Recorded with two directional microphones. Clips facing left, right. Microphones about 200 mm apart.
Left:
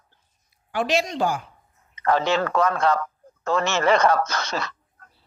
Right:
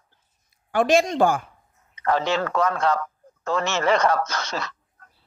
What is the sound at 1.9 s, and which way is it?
A man's voice, 60° left (ahead or behind).